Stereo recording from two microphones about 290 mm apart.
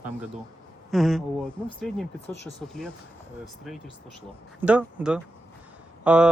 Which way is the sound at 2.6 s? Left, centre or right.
Centre.